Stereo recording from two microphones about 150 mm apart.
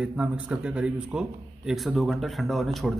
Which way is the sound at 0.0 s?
5° right (ahead or behind).